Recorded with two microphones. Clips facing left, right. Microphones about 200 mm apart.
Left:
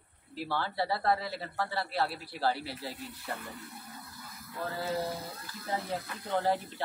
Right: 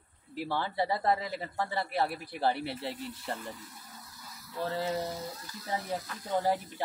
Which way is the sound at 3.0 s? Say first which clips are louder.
Right 2 dB; 60° left (ahead or behind).